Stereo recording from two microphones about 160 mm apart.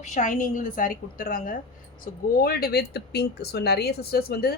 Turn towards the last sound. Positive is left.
turn(degrees=70)  # may be behind; listen again after turning